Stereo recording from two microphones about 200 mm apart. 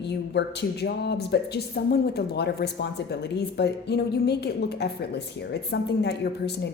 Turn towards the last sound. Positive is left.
turn(degrees=55)  # may be behind; listen again after turning